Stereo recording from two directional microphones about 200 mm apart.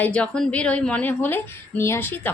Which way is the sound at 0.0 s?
5° left (ahead or behind).